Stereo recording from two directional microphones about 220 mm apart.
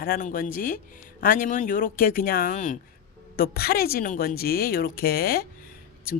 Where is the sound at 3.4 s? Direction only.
45° left (ahead or behind).